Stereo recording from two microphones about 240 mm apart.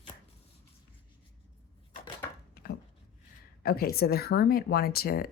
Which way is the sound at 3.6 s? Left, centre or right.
Left.